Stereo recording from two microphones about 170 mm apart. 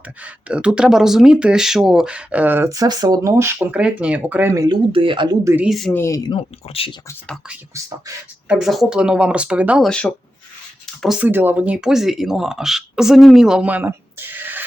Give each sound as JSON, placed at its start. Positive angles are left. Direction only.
{"t": 0.2, "sound": "speech", "side_deg": -10}
{"t": 5.5, "sound": "speech", "side_deg": 0}
{"t": 5.9, "sound": "speech", "side_deg": 15}
{"t": 6.7, "sound": "speech", "side_deg": 35}
{"t": 7.7, "sound": "speech", "side_deg": -20}
{"t": 8.4, "sound": "speech", "side_deg": 0}